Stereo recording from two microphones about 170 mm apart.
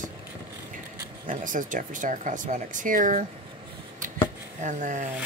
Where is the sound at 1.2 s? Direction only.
50° right (ahead or behind).